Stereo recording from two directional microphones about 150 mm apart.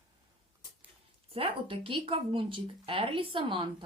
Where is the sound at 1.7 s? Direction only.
35° right (ahead or behind).